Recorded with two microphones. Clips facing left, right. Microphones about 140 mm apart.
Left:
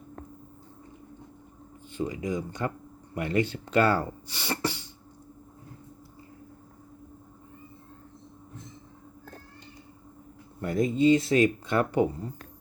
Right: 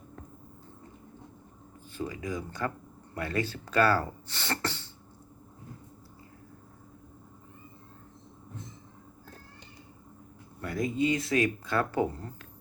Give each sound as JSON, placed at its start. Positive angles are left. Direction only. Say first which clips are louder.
{"t": 1.9, "sound": "speech", "louder": "left 4 dB", "side_deg": 20}
{"t": 10.6, "sound": "speech", "louder": "left 5 dB", "side_deg": 25}